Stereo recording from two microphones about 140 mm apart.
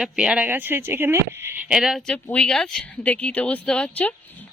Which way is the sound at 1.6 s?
5° right (ahead or behind).